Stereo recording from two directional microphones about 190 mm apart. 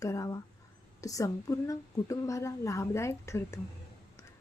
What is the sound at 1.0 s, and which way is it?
A woman's voice, 15° left (ahead or behind).